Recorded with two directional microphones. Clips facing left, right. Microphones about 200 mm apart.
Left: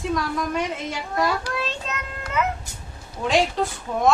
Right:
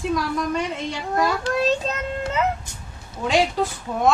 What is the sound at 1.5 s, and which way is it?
Child singing, 25° right (ahead or behind).